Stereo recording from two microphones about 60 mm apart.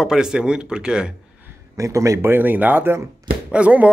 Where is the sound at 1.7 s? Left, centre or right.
Right.